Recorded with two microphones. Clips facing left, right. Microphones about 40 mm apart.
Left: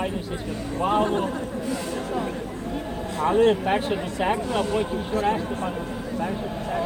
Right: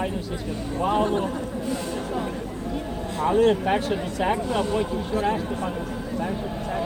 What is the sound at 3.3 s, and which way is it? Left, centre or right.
Speech, centre.